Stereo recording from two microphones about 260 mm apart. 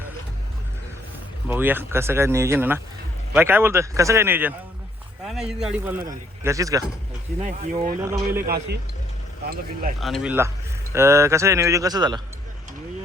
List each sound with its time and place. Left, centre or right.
1.5 s speech: centre
7.3 s speech: right
8.0 s speech: centre
9.4 s speech: right
10.0 s speech: centre